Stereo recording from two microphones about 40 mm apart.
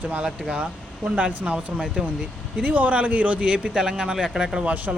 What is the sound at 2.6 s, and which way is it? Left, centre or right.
Speech, right.